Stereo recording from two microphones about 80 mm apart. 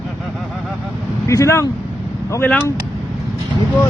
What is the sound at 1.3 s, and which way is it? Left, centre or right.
Speech, left.